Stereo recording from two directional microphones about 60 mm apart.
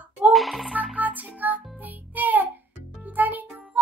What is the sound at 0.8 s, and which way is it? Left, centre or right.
Music, right.